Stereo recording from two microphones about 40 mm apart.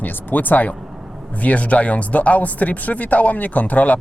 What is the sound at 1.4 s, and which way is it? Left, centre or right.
Speech, left.